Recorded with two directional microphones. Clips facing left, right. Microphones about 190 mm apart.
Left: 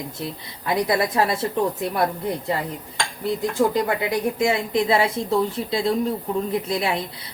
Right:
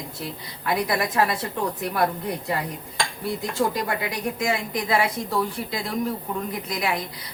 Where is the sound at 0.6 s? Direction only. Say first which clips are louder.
Left 3 dB; 25° left (ahead or behind).